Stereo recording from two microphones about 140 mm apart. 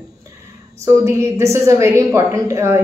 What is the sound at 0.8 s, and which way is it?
A woman's voice, 20° right (ahead or behind).